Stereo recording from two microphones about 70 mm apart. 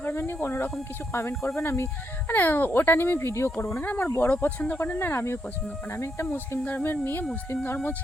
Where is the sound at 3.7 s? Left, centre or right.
Left.